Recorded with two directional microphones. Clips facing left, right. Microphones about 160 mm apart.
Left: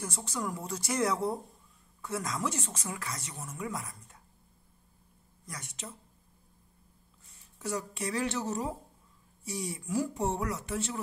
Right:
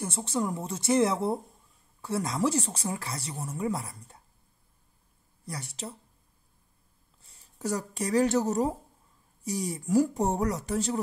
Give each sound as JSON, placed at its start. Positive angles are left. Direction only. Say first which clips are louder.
{"t": 0.0, "sound": "speech", "louder": "right 6 dB", "side_deg": -25}
{"t": 5.4, "sound": "speech", "louder": "right 6 dB", "side_deg": -35}
{"t": 7.5, "sound": "speech", "louder": "right 4 dB", "side_deg": -40}